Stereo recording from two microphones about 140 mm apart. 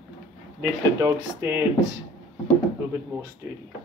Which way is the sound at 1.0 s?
20° right (ahead or behind).